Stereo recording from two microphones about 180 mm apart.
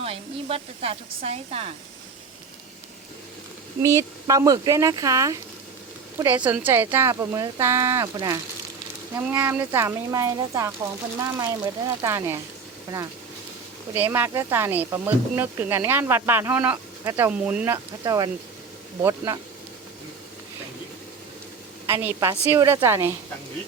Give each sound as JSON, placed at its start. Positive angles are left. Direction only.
{"t": 0.0, "sound": "speech", "side_deg": -30}
{"t": 3.8, "sound": "speech", "side_deg": -15}
{"t": 13.9, "sound": "speech", "side_deg": -10}
{"t": 18.0, "sound": "speech", "side_deg": -20}
{"t": 21.8, "sound": "speech", "side_deg": -15}